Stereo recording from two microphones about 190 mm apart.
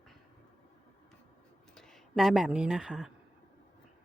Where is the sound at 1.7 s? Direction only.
Centre (ahead or behind).